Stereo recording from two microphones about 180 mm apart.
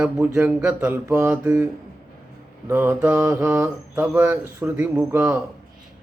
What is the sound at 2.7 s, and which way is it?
Mantra, 10° right (ahead or behind).